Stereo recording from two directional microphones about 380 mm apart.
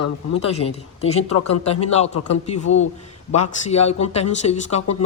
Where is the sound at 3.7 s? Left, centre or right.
Centre.